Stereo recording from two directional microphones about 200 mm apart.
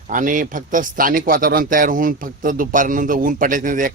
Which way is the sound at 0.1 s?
40° right (ahead or behind).